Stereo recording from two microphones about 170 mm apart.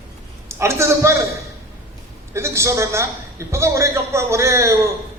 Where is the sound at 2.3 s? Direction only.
15° right (ahead or behind).